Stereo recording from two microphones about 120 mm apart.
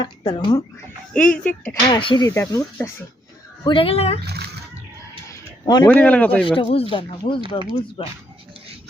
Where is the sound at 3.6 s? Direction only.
45° left (ahead or behind).